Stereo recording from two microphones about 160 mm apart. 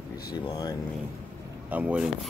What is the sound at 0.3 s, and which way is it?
Speech, 25° left (ahead or behind).